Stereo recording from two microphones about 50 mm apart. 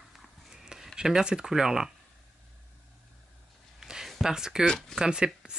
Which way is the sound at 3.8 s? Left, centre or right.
Centre.